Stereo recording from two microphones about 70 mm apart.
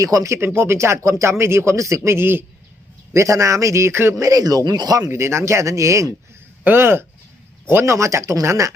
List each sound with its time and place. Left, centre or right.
0.0 s speech: right
3.1 s speech: right
4.2 s speech: right
5.0 s speech: right
6.7 s speech: right